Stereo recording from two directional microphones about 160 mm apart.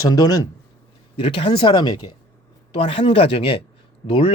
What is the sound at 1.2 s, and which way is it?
Speech, 35° left (ahead or behind).